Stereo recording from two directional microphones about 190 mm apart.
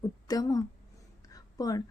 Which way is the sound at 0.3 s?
20° left (ahead or behind).